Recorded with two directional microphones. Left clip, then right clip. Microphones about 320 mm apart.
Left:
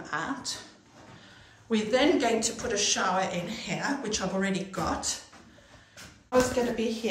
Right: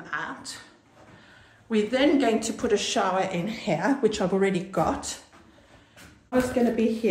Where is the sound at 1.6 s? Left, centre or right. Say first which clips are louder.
Right 2 dB; centre.